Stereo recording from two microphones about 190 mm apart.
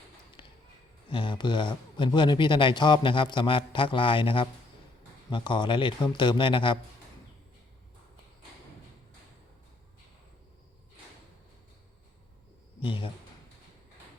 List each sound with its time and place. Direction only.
0.4 s a sound: 25° left (ahead or behind)
1.1 s a man's voice: 25° left (ahead or behind)
12.8 s speech: 25° left (ahead or behind)